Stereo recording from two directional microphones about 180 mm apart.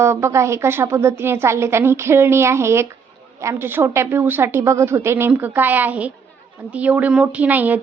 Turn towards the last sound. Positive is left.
turn(degrees=-10)  # may be behind; listen again after turning